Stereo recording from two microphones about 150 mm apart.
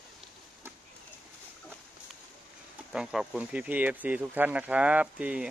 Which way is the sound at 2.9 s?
5° right (ahead or behind).